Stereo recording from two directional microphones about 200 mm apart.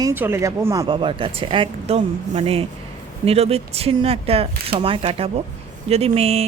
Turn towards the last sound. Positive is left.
turn(degrees=-30)  # may be behind; listen again after turning